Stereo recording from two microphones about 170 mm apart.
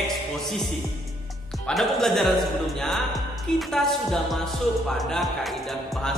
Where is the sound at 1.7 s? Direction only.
Centre (ahead or behind).